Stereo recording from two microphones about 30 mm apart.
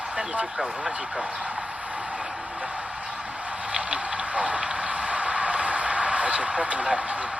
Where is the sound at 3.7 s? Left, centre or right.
Right.